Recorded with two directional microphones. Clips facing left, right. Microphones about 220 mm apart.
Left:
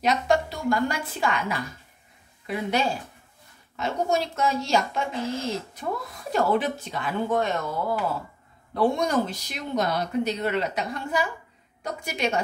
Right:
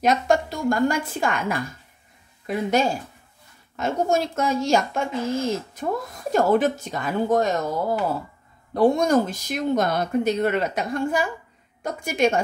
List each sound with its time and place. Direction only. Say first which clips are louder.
0.0 s speech: right 3 dB; 50° right (ahead or behind)